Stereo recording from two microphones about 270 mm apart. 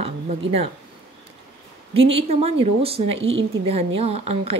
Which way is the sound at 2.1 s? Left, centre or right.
Right.